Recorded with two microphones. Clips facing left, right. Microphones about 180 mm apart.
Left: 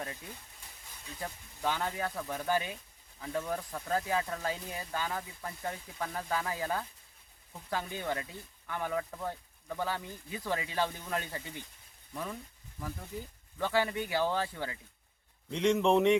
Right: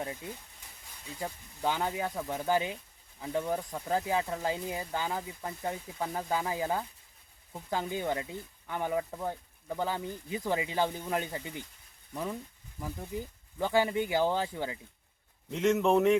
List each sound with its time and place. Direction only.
1.2 s speech: 20° right (ahead or behind)
15.4 s a man's voice: 5° right (ahead or behind)